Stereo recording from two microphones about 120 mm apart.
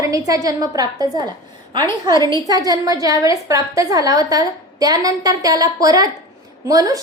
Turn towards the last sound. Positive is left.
turn(degrees=-30)  # may be behind; listen again after turning